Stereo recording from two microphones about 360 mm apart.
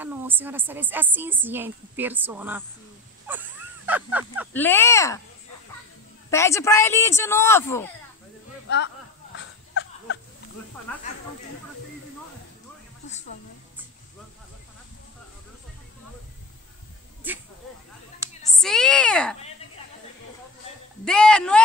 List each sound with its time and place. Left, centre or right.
0.0 s speech: centre
4.6 s a man's voice: centre
6.3 s a man's voice: centre
8.6 s speech: left
10.9 s speech: centre
18.2 s speech: centre
21.0 s speech: centre